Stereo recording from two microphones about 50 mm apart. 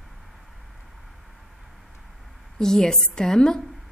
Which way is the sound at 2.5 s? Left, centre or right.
Centre.